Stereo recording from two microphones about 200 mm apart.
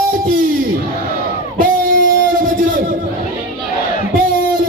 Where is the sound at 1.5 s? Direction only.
45° right (ahead or behind).